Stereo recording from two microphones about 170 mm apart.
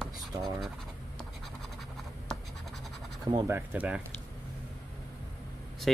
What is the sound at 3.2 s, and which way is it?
Speech, 20° right (ahead or behind).